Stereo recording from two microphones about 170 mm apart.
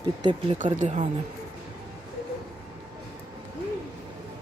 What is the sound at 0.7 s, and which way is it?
Speech, 40° right (ahead or behind).